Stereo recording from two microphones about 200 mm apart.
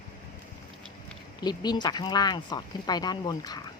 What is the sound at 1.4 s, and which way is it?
Speech, 20° left (ahead or behind).